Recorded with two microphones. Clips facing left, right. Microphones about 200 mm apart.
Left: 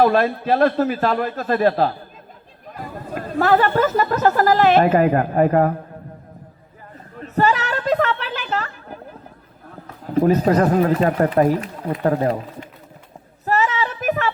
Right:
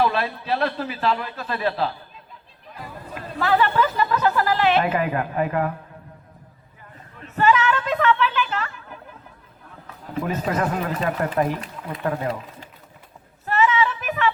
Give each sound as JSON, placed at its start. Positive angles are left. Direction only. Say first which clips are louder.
{"t": 0.0, "sound": "a man's voice", "louder": "left 7 dB", "side_deg": 45}
{"t": 7.2, "sound": "a sound", "louder": "even", "side_deg": 40}
{"t": 9.6, "sound": "speech", "louder": "left 6 dB", "side_deg": 40}
{"t": 13.4, "sound": "child singing", "louder": "even", "side_deg": 40}